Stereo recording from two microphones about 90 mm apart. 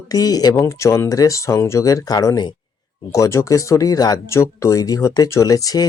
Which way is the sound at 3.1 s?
35° left (ahead or behind).